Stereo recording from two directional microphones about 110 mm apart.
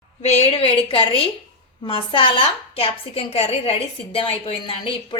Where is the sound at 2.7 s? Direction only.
65° left (ahead or behind).